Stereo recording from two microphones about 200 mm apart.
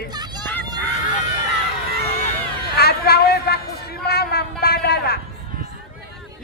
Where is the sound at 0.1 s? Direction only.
20° right (ahead or behind).